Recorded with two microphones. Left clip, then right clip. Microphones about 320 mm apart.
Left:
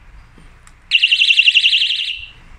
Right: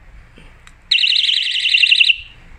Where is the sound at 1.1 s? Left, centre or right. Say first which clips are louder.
Left 5 dB; left.